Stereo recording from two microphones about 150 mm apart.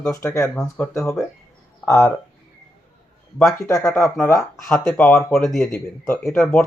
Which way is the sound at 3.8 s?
5° left (ahead or behind).